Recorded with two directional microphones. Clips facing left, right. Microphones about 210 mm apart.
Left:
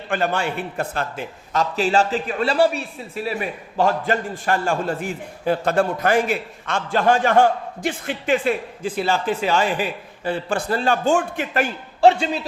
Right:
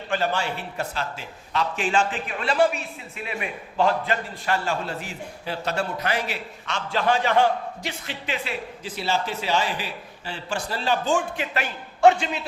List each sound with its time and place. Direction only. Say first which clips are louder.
0.1 s a man's voice: left 3 dB; 55° left (ahead or behind)
1.7 s a man's voice: left 6 dB; 40° left (ahead or behind)
11.9 s a man's voice: left 2 dB; 35° left (ahead or behind)